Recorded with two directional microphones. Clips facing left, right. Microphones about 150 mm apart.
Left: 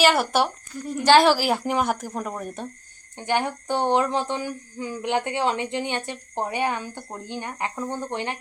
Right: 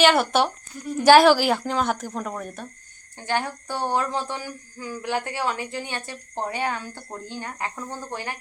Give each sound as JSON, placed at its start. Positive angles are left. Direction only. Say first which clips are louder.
{"t": 0.0, "sound": "speech", "louder": "right 1 dB", "side_deg": 5}
{"t": 1.0, "sound": "a woman's voice", "louder": "right 3 dB", "side_deg": -10}
{"t": 1.3, "sound": "speech", "louder": "right 1 dB", "side_deg": 0}